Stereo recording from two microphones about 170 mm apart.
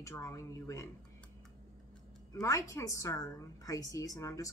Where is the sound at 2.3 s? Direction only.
20° left (ahead or behind).